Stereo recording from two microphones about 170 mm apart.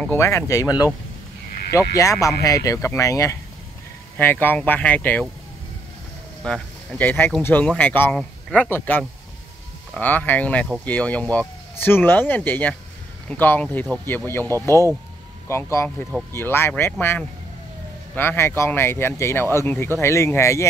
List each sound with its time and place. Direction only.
0.0 s speech: 15° left (ahead or behind)
2.0 s speech: 20° left (ahead or behind)
6.4 s speech: 5° left (ahead or behind)
18.1 s speech: 15° left (ahead or behind)